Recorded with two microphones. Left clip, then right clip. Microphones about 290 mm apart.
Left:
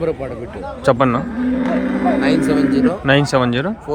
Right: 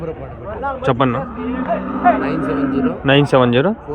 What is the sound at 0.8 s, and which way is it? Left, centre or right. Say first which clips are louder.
Speech: left 3 dB; centre.